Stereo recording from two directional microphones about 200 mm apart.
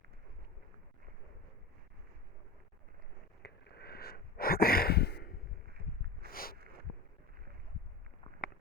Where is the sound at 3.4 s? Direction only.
55° left (ahead or behind).